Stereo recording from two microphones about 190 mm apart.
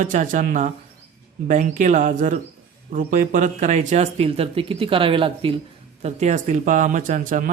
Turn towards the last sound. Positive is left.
turn(degrees=-45)  # may be behind; listen again after turning